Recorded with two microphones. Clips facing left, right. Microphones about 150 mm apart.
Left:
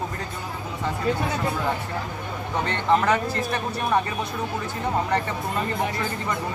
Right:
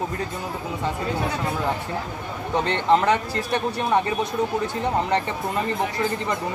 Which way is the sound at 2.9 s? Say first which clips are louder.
Right 2 dB; 25° right (ahead or behind).